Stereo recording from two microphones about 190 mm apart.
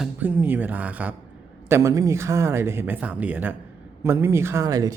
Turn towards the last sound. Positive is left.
turn(degrees=-20)  # may be behind; listen again after turning